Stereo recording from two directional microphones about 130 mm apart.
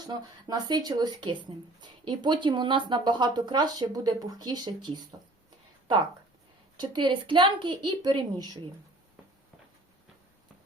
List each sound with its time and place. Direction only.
0.0 s speech: 30° right (ahead or behind)
6.7 s speech: 35° right (ahead or behind)